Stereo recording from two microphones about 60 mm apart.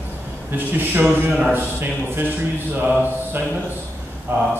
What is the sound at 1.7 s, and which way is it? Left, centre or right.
Speech, right.